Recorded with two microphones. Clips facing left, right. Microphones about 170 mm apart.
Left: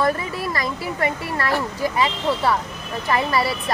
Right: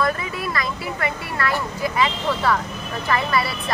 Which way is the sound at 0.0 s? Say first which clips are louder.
Left 2 dB; 40° left (ahead or behind).